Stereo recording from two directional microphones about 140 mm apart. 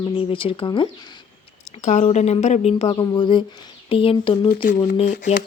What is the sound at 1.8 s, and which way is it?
Speech, 55° left (ahead or behind).